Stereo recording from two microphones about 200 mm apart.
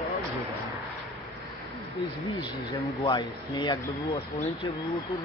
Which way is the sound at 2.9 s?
20° left (ahead or behind).